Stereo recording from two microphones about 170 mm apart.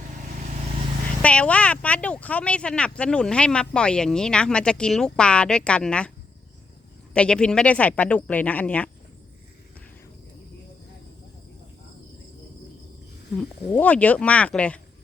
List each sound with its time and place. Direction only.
1.2 s speech: 5° left (ahead or behind)
7.1 s speech: 5° left (ahead or behind)
13.3 s speech: 10° left (ahead or behind)